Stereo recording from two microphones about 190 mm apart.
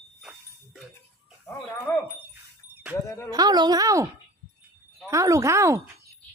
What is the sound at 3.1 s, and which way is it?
Speech, 15° left (ahead or behind).